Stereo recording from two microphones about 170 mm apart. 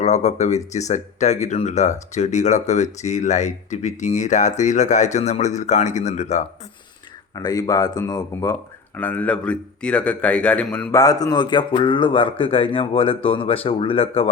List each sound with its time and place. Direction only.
0.0 s speech: 40° left (ahead or behind)
7.3 s speech: 20° left (ahead or behind)
9.0 s a man's voice: 10° left (ahead or behind)
10.9 s a man's voice: 20° left (ahead or behind)